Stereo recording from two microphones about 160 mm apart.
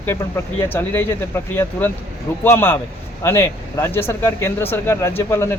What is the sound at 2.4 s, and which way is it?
Speech, 15° left (ahead or behind).